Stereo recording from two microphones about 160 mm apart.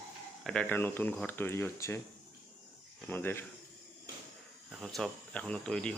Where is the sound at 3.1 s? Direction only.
15° left (ahead or behind).